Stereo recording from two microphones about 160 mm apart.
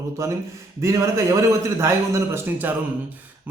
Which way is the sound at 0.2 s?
20° right (ahead or behind).